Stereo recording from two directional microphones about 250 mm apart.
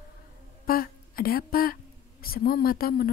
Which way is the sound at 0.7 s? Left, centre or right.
Left.